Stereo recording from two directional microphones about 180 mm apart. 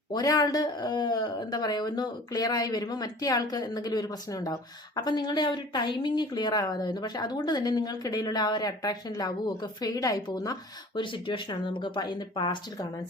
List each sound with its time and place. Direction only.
0.1 s speech: 20° left (ahead or behind)